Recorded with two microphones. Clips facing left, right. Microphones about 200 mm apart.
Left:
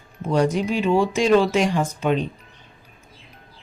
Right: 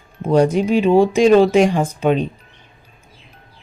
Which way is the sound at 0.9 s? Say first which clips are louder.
Right 6 dB; 55° right (ahead or behind).